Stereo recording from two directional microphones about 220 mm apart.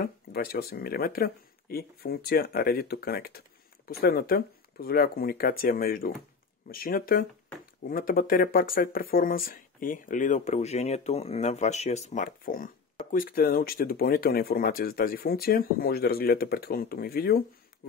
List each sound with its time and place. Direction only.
0.0 s speech: 40° left (ahead or behind)